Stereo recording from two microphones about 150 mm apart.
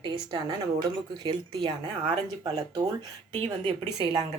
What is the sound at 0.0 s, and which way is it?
Speech, 30° right (ahead or behind).